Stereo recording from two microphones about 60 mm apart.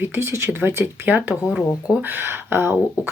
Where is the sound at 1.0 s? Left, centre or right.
Right.